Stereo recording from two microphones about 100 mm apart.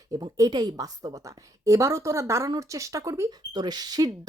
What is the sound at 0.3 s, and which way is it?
Speech, 40° right (ahead or behind).